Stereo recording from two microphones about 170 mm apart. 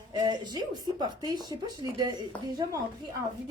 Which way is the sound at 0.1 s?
25° right (ahead or behind).